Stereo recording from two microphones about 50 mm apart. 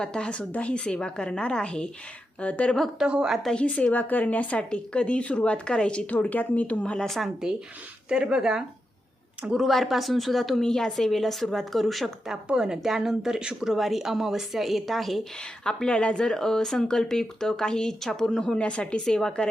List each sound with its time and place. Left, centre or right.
0.0 s a woman's voice: centre
3.0 s a woman's voice: centre
3.5 s a woman's voice: left
8.1 s a woman's voice: centre
9.5 s a woman's voice: centre
12.5 s a woman's voice: centre
15.4 s speech: centre
19.0 s speech: centre